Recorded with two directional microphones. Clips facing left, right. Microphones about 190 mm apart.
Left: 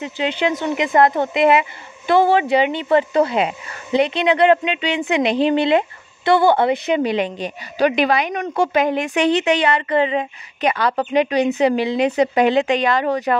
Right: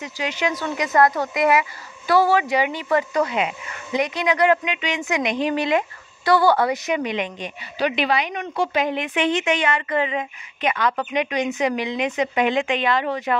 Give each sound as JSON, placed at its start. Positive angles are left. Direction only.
{"t": 0.0, "sound": "a woman's voice", "side_deg": 30}